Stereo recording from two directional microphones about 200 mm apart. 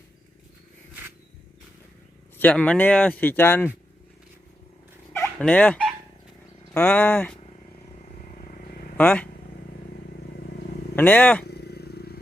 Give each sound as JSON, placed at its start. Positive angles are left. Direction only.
{"t": 2.4, "sound": "speech", "side_deg": 5}
{"t": 5.1, "sound": "fowl", "side_deg": 10}
{"t": 6.7, "sound": "speech", "side_deg": 10}
{"t": 7.9, "sound": "vehicle", "side_deg": 40}
{"t": 9.0, "sound": "speech", "side_deg": 5}
{"t": 10.9, "sound": "speech", "side_deg": 10}
{"t": 11.4, "sound": "a sound", "side_deg": 55}